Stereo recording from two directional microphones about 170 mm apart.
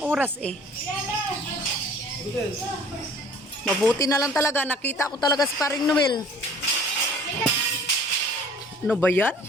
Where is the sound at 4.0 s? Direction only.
20° left (ahead or behind).